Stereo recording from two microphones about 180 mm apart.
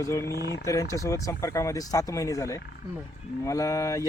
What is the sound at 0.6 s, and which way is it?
Speech, 15° left (ahead or behind).